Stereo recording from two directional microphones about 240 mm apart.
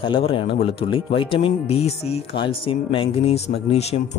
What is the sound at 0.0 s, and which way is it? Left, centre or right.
Speech, left.